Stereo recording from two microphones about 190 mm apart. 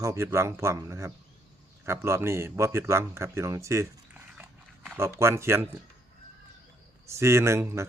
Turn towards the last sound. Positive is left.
turn(degrees=-15)  # may be behind; listen again after turning